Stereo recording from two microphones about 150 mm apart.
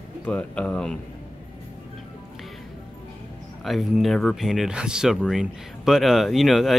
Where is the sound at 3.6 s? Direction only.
Centre (ahead or behind).